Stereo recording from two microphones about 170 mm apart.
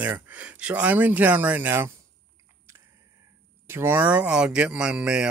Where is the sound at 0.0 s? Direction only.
10° right (ahead or behind).